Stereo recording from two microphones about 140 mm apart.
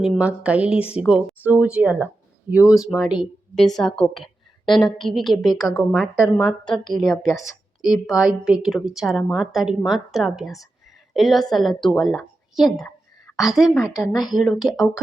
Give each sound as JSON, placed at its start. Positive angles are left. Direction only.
{"t": 0.0, "sound": "a woman's voice", "side_deg": -5}
{"t": 5.5, "sound": "speech", "side_deg": 25}
{"t": 5.9, "sound": "a woman's voice", "side_deg": -5}
{"t": 6.3, "sound": "a woman's voice", "side_deg": 5}
{"t": 6.7, "sound": "a woman's voice", "side_deg": 30}
{"t": 8.0, "sound": "a woman's voice", "side_deg": -5}
{"t": 14.1, "sound": "speech", "side_deg": 30}
{"t": 14.3, "sound": "a woman's voice", "side_deg": 0}